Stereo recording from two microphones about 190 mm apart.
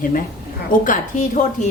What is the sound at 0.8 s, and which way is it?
Speech, 45° left (ahead or behind).